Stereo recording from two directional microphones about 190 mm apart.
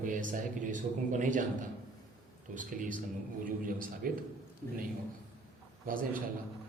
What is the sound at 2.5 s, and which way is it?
Speech, 45° right (ahead or behind).